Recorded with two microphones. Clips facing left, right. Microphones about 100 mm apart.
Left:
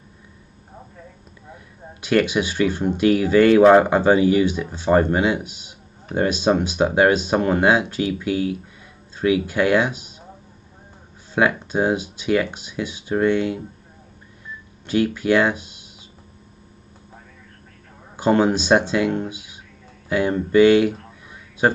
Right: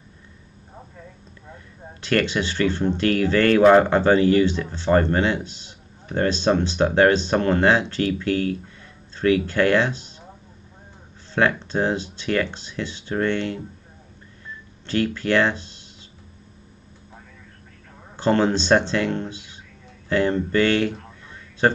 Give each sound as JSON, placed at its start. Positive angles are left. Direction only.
{"t": 2.0, "sound": "speech", "side_deg": 10}
{"t": 11.3, "sound": "speech", "side_deg": 10}
{"t": 14.9, "sound": "speech", "side_deg": 10}
{"t": 18.1, "sound": "speech", "side_deg": 10}